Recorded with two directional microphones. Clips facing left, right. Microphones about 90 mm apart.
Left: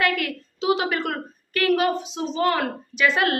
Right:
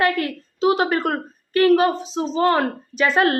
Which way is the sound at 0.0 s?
30° right (ahead or behind).